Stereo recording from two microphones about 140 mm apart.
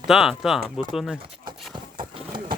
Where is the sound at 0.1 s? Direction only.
5° right (ahead or behind).